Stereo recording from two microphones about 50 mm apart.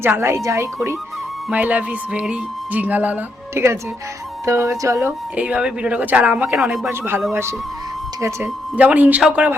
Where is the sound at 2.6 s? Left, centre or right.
Right.